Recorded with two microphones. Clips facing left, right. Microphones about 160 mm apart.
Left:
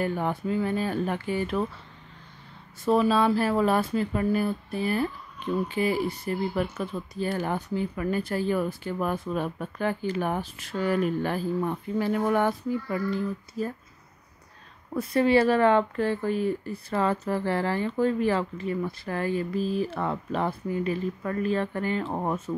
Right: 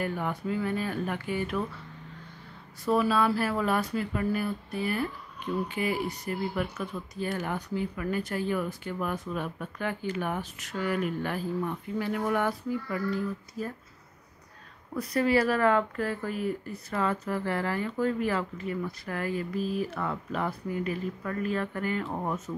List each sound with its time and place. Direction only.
0.0 s speech: 30° left (ahead or behind)
2.8 s speech: 25° left (ahead or behind)
15.0 s speech: 25° left (ahead or behind)